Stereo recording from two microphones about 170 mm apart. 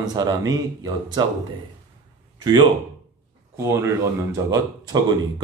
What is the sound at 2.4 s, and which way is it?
Speech, 25° right (ahead or behind).